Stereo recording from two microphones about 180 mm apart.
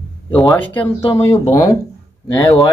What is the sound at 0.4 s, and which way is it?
Speech, 5° left (ahead or behind).